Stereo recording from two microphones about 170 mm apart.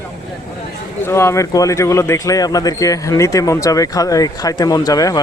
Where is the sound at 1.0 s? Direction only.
15° left (ahead or behind).